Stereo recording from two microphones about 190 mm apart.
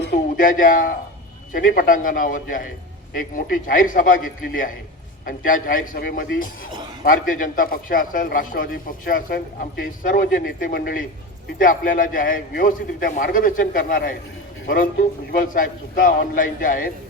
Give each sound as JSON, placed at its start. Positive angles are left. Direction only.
{"t": 0.0, "sound": "a sound", "side_deg": 55}
{"t": 1.5, "sound": "a man's voice", "side_deg": 50}
{"t": 15.3, "sound": "a man's voice", "side_deg": 45}